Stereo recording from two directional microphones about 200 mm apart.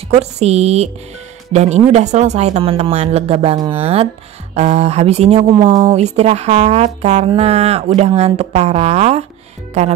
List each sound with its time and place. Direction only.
0.1 s speech: 30° right (ahead or behind)